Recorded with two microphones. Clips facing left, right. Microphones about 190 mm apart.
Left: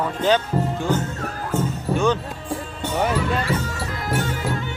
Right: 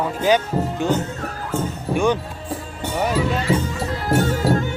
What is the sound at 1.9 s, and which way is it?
Speech, 15° right (ahead or behind).